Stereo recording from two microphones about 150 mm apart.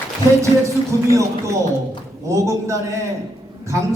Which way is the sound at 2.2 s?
20° right (ahead or behind).